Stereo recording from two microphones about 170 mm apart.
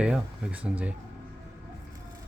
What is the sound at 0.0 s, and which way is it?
Speech, 5° right (ahead or behind).